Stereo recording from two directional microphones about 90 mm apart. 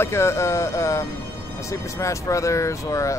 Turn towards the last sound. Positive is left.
turn(degrees=35)  # may be behind; listen again after turning